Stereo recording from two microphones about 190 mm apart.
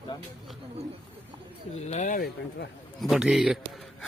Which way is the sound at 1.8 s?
40° left (ahead or behind).